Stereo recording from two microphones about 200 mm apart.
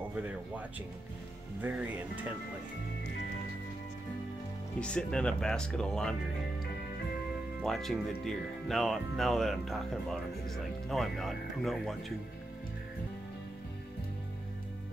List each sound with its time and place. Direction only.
1.6 s speech: 10° right (ahead or behind)
4.7 s speech: 5° left (ahead or behind)
7.6 s speech: centre (ahead or behind)